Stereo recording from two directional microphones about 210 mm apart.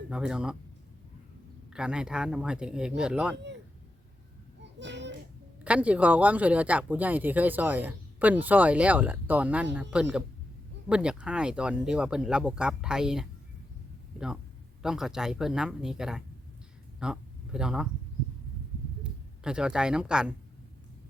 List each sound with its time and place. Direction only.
0.1 s speech: 5° right (ahead or behind)
1.7 s speech: 5° right (ahead or behind)
4.6 s a sound: 55° right (ahead or behind)
5.6 s speech: 5° right (ahead or behind)
14.8 s speech: centre (ahead or behind)
19.0 s speech: 5° right (ahead or behind)